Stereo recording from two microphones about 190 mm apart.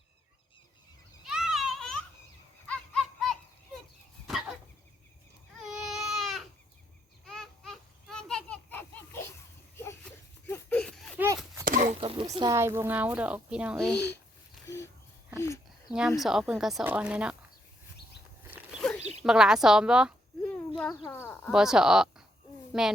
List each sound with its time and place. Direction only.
1.2 s children playing: centre (ahead or behind)
2.6 s a sound: 5° left (ahead or behind)
4.3 s fowl: centre (ahead or behind)
5.5 s baby cry: centre (ahead or behind)
7.3 s a sound: centre (ahead or behind)
10.5 s a sound: 5° left (ahead or behind)
11.6 s horse: 45° right (ahead or behind)
11.9 s chop: 30° right (ahead or behind)
12.4 s a woman's voice: 15° right (ahead or behind)
15.9 s speech: 5° right (ahead or behind)
19.2 s a woman's voice: 5° right (ahead or behind)
20.5 s a sound: 5° left (ahead or behind)
21.5 s speech: 5° right (ahead or behind)